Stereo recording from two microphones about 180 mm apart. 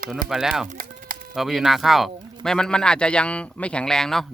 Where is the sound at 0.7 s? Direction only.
50° right (ahead or behind).